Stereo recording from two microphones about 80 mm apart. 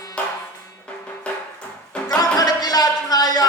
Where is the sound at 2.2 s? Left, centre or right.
Left.